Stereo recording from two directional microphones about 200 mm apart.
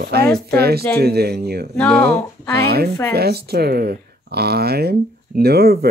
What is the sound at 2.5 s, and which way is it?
Speech, 50° right (ahead or behind).